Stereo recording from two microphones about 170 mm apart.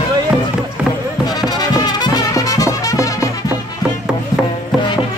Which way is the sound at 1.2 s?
25° left (ahead or behind).